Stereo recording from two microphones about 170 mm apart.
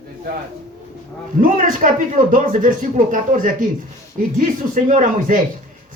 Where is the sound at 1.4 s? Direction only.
50° right (ahead or behind).